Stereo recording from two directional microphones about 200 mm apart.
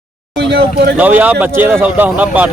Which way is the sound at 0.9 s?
10° right (ahead or behind).